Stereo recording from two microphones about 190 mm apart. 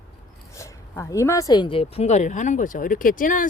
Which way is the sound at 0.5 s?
15° left (ahead or behind).